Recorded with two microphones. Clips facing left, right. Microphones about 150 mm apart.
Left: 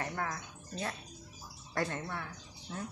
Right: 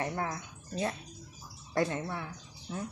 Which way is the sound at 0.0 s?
25° right (ahead or behind).